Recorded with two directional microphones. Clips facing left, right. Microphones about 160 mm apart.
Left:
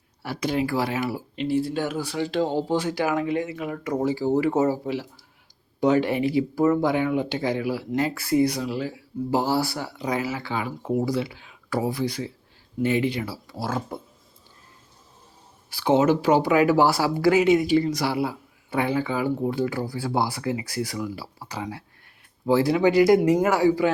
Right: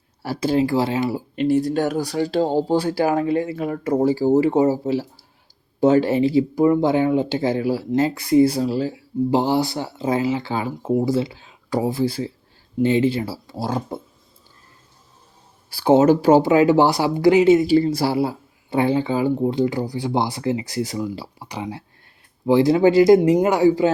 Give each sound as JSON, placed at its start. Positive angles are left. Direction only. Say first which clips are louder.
{"t": 0.2, "sound": "speech", "louder": "right 6 dB", "side_deg": -30}
{"t": 1.4, "sound": "speech", "louder": "right 6 dB", "side_deg": -45}
{"t": 4.4, "sound": "speech", "louder": "right 5 dB", "side_deg": -20}
{"t": 8.4, "sound": "speech", "louder": "right 6 dB", "side_deg": -30}
{"t": 15.7, "sound": "speech", "louder": "right 5 dB", "side_deg": -40}
{"t": 16.4, "sound": "speech", "louder": "right 4 dB", "side_deg": -25}